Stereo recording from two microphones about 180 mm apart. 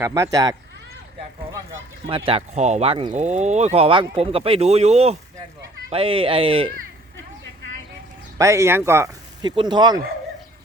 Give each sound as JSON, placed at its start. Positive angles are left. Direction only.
{"t": 0.0, "sound": "speech", "side_deg": -20}
{"t": 2.0, "sound": "speech", "side_deg": -30}
{"t": 8.4, "sound": "speech", "side_deg": -15}